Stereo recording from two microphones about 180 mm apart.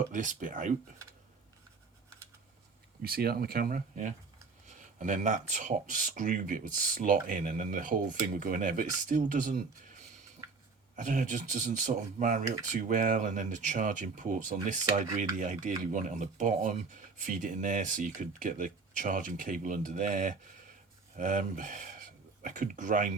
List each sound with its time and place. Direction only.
0.1 s speech: 45° right (ahead or behind)
3.0 s speech: 60° right (ahead or behind)